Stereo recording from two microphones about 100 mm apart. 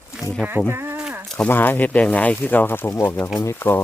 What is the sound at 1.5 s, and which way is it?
Speech, 20° left (ahead or behind).